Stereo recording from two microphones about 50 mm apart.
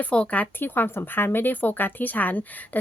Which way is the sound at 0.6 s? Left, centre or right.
Left.